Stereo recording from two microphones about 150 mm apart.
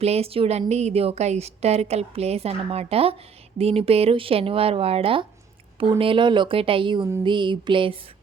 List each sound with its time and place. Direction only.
0.0 s a woman's voice: 45° right (ahead or behind)